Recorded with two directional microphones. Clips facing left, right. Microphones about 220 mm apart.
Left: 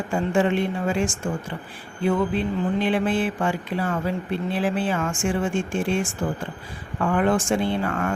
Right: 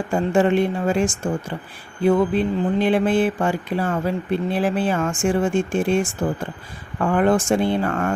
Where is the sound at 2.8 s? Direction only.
40° right (ahead or behind).